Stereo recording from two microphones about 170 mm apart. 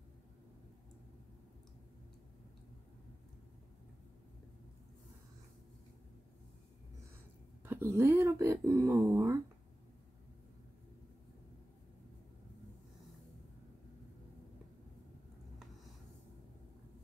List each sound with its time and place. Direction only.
7.6 s speech: 15° right (ahead or behind)